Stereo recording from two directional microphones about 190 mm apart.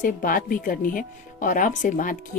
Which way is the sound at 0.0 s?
45° left (ahead or behind).